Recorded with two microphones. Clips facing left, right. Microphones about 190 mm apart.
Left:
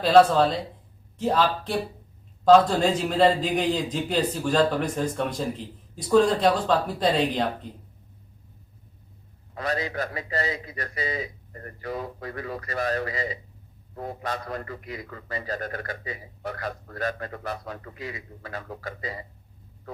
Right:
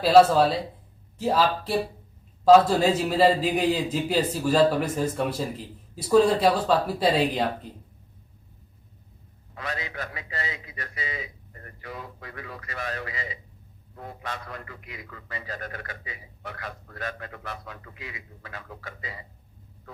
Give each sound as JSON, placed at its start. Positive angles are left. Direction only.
{"t": 0.0, "sound": "a man's voice", "side_deg": -5}
{"t": 9.6, "sound": "a man's voice", "side_deg": 40}